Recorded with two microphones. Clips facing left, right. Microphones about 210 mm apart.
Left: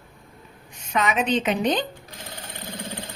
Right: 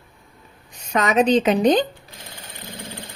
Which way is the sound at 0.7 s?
40° right (ahead or behind).